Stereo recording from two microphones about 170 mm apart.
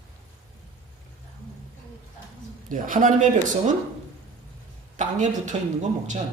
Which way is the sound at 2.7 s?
55° right (ahead or behind).